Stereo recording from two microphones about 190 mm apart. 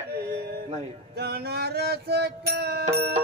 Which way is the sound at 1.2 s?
60° right (ahead or behind).